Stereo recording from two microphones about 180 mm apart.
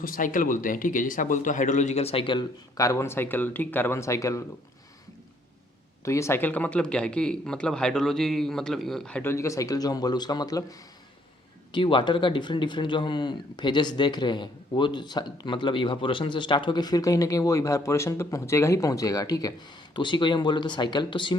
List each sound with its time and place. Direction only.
0.0 s speech: 50° left (ahead or behind); by 4.4 s 15° left (ahead or behind)
6.1 s a man's voice: 15° left (ahead or behind)